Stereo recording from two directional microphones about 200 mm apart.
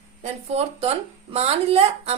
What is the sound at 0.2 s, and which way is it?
A woman's voice, 30° right (ahead or behind).